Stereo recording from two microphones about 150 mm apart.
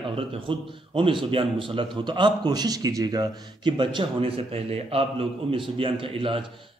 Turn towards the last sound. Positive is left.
turn(degrees=-35)  # may be behind; listen again after turning